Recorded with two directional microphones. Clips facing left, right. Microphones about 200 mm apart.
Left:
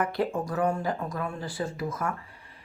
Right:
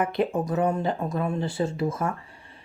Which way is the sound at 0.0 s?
20° right (ahead or behind).